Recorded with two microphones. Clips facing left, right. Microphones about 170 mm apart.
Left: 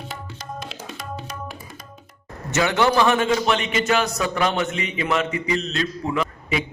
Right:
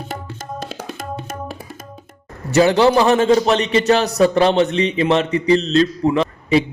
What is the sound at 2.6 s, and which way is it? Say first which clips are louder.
A man's voice: right 6 dB; 30° right (ahead or behind).